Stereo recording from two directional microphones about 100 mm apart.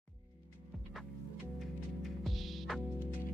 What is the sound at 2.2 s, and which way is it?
Music, centre (ahead or behind).